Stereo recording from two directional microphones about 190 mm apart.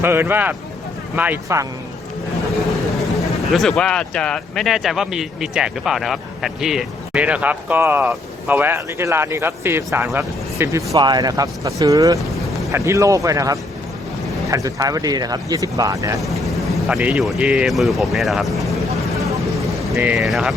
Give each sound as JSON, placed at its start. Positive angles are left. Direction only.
{"t": 0.0, "sound": "speech", "side_deg": -10}
{"t": 3.5, "sound": "speech", "side_deg": 0}
{"t": 16.2, "sound": "speech", "side_deg": 0}
{"t": 20.0, "sound": "speech", "side_deg": -5}